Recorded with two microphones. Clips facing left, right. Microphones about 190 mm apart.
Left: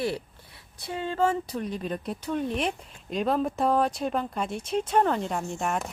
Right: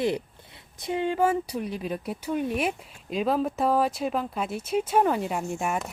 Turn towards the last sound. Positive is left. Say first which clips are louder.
# right 1 dB
turn(degrees=-5)  # may be behind; listen again after turning